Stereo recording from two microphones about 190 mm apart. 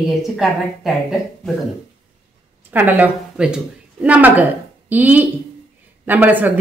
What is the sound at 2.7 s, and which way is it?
A woman's voice, 10° right (ahead or behind).